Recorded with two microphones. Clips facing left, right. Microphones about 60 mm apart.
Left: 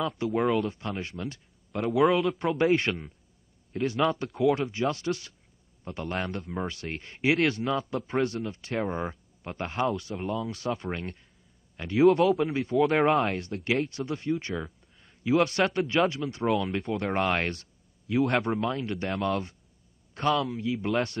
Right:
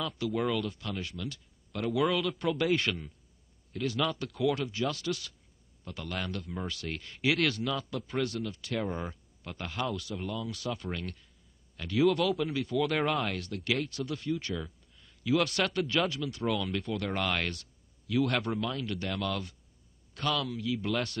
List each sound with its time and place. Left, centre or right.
0.0 s speech: left